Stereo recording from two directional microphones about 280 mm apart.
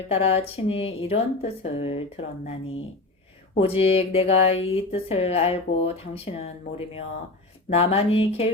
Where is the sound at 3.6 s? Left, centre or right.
Left.